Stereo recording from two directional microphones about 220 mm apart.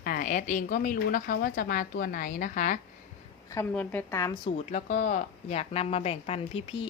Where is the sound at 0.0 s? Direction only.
40° left (ahead or behind).